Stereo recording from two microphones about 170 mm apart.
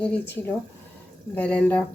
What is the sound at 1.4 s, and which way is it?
Speech, 10° left (ahead or behind).